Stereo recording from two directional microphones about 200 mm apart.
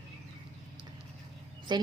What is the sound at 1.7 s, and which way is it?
Speech, 20° right (ahead or behind).